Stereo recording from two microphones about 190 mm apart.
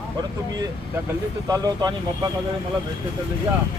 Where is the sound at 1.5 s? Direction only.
20° right (ahead or behind).